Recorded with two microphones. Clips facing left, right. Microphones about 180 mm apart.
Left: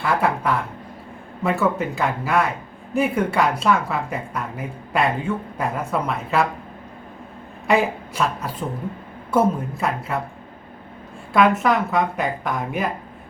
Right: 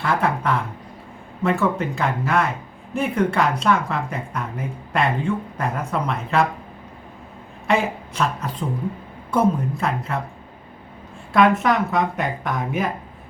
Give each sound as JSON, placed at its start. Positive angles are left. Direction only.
{"t": 0.0, "sound": "a woman's voice", "side_deg": 0}
{"t": 7.7, "sound": "a woman's voice", "side_deg": 0}
{"t": 11.3, "sound": "a woman's voice", "side_deg": 0}